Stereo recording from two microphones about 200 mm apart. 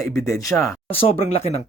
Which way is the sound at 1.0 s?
30° left (ahead or behind).